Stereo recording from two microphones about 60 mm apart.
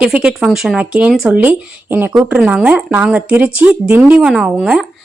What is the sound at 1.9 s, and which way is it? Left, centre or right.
Speech, right.